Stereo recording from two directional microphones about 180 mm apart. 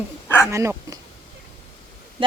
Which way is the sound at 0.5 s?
15° right (ahead or behind).